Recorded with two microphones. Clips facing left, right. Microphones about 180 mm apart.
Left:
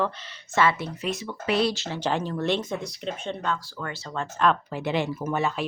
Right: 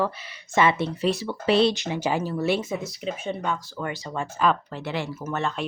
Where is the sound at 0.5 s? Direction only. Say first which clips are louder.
Right 2 dB; 20° right (ahead or behind).